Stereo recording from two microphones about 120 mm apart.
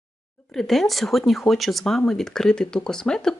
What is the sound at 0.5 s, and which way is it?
Speech, centre (ahead or behind).